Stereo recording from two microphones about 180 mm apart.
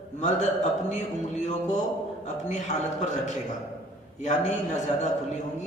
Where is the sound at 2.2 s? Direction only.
40° left (ahead or behind).